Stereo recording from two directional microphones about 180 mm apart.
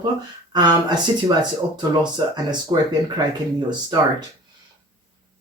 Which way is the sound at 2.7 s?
25° right (ahead or behind).